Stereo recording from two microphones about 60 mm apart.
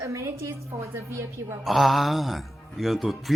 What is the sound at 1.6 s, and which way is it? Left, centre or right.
Speech, centre.